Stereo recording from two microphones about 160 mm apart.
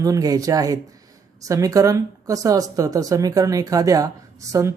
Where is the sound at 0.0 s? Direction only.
20° right (ahead or behind).